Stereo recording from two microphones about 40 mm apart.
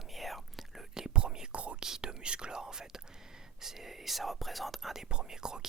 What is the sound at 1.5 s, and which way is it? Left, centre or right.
Speech, right.